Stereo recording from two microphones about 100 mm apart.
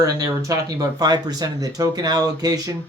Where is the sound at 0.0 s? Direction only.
35° right (ahead or behind).